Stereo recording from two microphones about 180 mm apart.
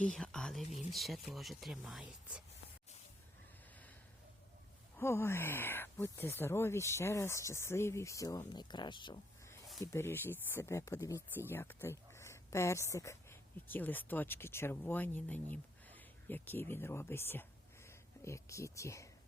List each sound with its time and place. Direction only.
0.0 s speech: 5° left (ahead or behind)
4.9 s speech: 15° left (ahead or behind)
9.8 s speech: 15° left (ahead or behind)